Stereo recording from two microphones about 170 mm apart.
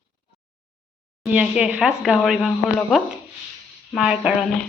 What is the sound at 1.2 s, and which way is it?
A woman's voice, 5° right (ahead or behind).